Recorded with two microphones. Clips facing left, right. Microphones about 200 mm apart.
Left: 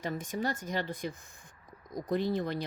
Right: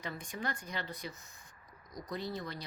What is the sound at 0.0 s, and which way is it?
A woman's voice, 45° left (ahead or behind).